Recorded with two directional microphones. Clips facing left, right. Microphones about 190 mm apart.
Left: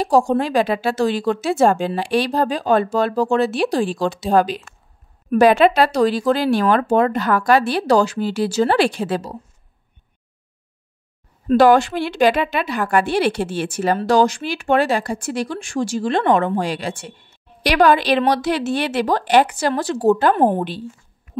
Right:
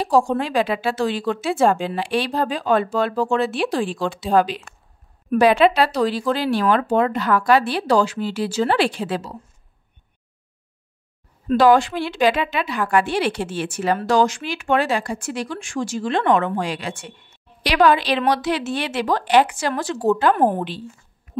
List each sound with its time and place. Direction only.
0.0 s a woman's voice: 45° left (ahead or behind)
11.4 s a woman's voice: 45° left (ahead or behind)
17.6 s a woman's voice: 45° left (ahead or behind)
20.3 s a woman's voice: 25° left (ahead or behind)